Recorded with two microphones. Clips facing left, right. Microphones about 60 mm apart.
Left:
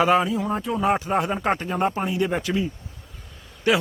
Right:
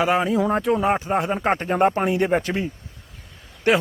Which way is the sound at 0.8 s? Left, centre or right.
Right.